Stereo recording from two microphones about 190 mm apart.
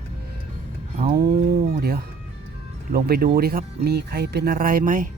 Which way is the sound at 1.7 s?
55° right (ahead or behind).